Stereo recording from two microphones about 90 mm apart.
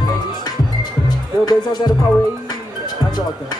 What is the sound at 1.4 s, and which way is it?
Music, 50° left (ahead or behind).